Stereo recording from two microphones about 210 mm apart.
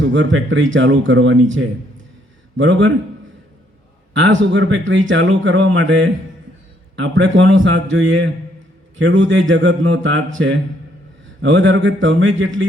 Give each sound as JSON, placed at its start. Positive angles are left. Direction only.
{"t": 0.0, "sound": "speech", "side_deg": -60}
{"t": 4.1, "sound": "speech", "side_deg": -60}